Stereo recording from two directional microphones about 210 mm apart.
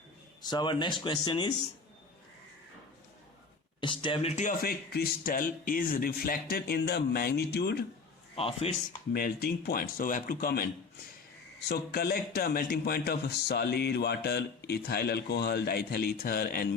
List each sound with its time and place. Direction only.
0.4 s speech: 20° left (ahead or behind)
3.8 s a man's voice: 25° left (ahead or behind); by 7.9 s 50° left (ahead or behind)
8.4 s speech: 25° left (ahead or behind)
9.1 s a man's voice: 50° left (ahead or behind)
11.7 s a man's voice: 45° left (ahead or behind)